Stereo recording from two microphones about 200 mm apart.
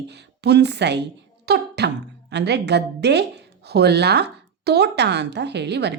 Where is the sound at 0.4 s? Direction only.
55° right (ahead or behind).